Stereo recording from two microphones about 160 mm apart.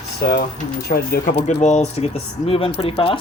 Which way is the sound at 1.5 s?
45° left (ahead or behind).